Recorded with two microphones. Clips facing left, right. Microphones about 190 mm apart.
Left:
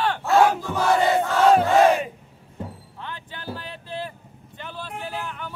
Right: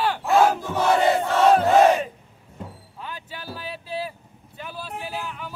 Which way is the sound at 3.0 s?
10° right (ahead or behind).